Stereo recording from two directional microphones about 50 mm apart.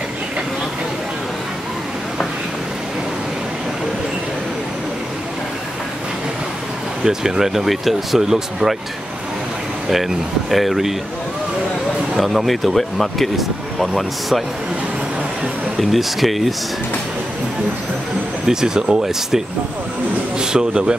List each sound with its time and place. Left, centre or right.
7.1 s speech: centre
9.8 s speech: centre
12.2 s speech: centre
15.8 s speech: centre
18.5 s speech: centre